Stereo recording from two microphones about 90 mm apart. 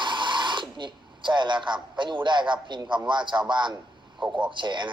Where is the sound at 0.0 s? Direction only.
60° right (ahead or behind).